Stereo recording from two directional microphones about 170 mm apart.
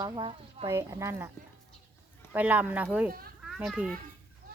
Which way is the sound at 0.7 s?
15° right (ahead or behind).